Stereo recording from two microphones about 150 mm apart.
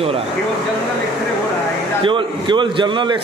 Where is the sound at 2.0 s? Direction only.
35° right (ahead or behind).